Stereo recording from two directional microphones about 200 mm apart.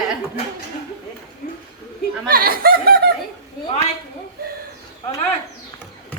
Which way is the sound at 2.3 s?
50° right (ahead or behind).